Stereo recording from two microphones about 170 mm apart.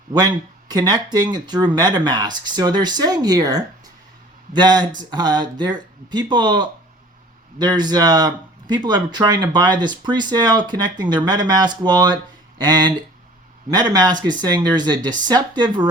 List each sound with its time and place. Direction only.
0.1 s speech: 25° right (ahead or behind)
13.9 s speech: 25° right (ahead or behind)